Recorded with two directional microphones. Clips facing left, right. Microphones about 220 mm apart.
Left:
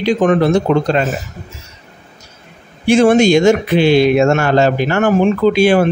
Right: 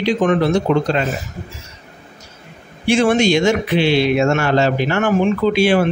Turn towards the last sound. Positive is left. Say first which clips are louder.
# left 3 dB
turn(degrees=45)  # may be behind; listen again after turning